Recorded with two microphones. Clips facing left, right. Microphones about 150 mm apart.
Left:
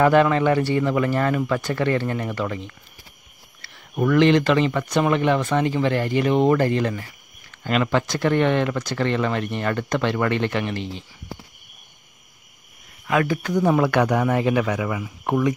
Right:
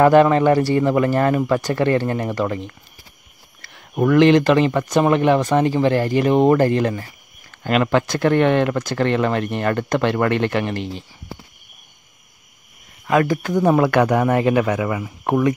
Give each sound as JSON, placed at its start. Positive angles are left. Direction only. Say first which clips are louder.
{"t": 0.0, "sound": "speech", "louder": "right 4 dB", "side_deg": -40}
{"t": 7.6, "sound": "speech", "louder": "right 4 dB", "side_deg": -55}
{"t": 13.0, "sound": "speech", "louder": "right 4 dB", "side_deg": -40}